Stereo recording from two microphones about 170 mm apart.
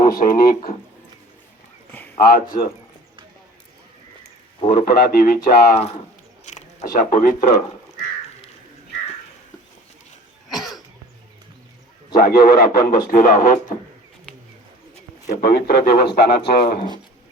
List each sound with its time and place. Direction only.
0.0 s a man's voice: 55° left (ahead or behind)
2.1 s a man's voice: 60° left (ahead or behind)
4.9 s a man's voice: 60° left (ahead or behind)
6.4 s a sound: 45° left (ahead or behind)
10.5 s cough: centre (ahead or behind)
12.1 s a man's voice: 60° left (ahead or behind)
15.3 s speech: 70° left (ahead or behind)